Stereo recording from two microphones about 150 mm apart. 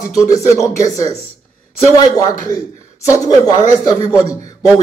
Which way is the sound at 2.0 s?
25° left (ahead or behind).